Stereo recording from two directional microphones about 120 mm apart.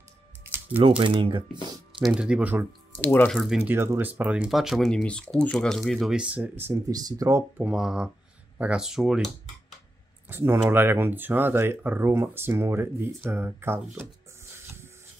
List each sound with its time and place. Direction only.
0.7 s speech: 50° right (ahead or behind)
2.0 s speech: 10° right (ahead or behind)
3.0 s speech: 15° left (ahead or behind)
3.3 s speech: centre (ahead or behind)
3.6 s speech: 20° right (ahead or behind)
4.5 s speech: centre (ahead or behind); by 6.8 s 20° right (ahead or behind)
6.9 s speech: 30° right (ahead or behind)
7.6 s speech: 5° right (ahead or behind)
10.2 s speech: 20° right (ahead or behind)